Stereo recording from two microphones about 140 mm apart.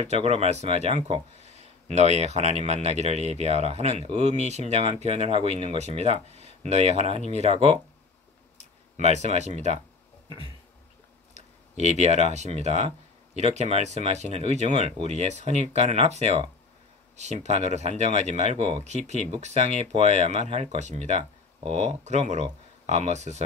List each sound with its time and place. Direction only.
0.0 s speech: 50° right (ahead or behind)
11.3 s speech: 55° right (ahead or behind)